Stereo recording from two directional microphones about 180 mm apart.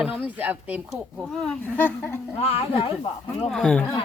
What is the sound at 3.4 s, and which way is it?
Speech, 5° left (ahead or behind).